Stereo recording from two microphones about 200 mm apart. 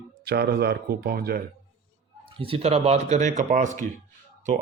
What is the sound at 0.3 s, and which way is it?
A man's voice, 50° right (ahead or behind).